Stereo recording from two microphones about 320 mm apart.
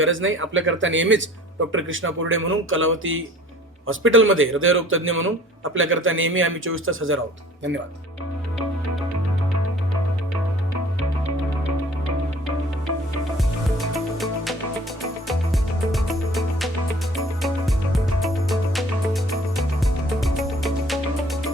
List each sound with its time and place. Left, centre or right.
0.0 s speech: right
13.3 s music: centre